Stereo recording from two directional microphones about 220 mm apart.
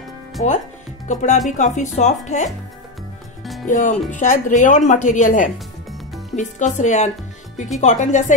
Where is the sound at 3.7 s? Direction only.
35° left (ahead or behind).